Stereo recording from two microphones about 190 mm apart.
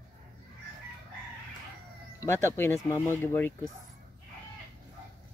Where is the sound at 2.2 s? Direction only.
15° left (ahead or behind).